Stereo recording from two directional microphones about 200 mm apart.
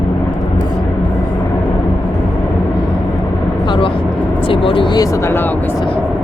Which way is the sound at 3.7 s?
25° left (ahead or behind).